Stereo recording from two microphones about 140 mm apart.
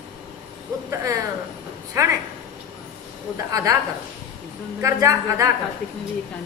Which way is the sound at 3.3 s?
25° right (ahead or behind).